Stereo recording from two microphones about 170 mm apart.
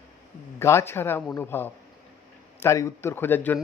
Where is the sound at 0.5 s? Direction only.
15° left (ahead or behind).